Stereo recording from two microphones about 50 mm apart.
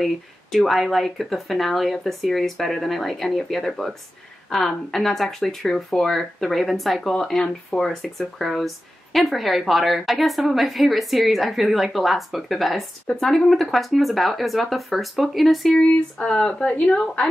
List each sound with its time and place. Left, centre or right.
0.0 s speech: centre
16.3 s speech: centre